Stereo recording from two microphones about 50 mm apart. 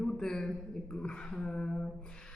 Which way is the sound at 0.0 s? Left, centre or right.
Centre.